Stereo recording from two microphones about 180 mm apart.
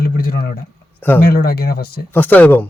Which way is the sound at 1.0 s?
10° left (ahead or behind).